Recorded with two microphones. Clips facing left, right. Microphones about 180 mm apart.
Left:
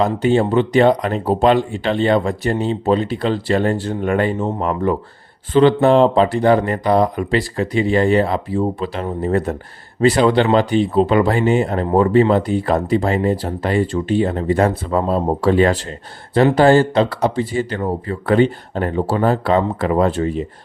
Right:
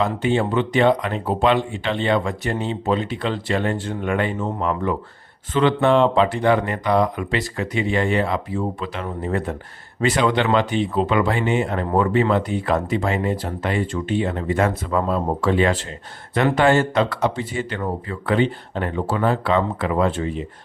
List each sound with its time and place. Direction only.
0.0 s speech: 40° left (ahead or behind)